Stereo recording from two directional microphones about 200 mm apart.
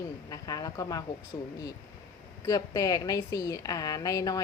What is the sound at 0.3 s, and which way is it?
Speech, 20° left (ahead or behind).